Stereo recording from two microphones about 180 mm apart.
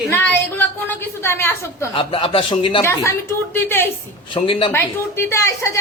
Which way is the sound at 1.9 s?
30° left (ahead or behind).